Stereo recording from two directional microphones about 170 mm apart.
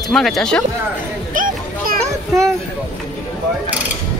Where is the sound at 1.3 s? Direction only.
50° right (ahead or behind).